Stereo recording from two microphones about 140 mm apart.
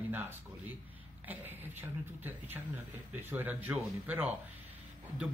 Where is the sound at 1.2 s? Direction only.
15° right (ahead or behind).